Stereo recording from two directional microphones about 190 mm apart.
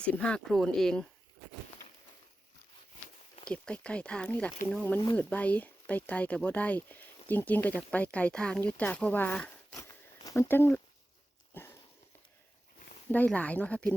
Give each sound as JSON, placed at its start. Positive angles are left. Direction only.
{"t": 0.0, "sound": "speech", "side_deg": 5}
{"t": 3.4, "sound": "speech", "side_deg": 5}
{"t": 11.5, "sound": "a sound", "side_deg": 15}
{"t": 13.1, "sound": "speech", "side_deg": 10}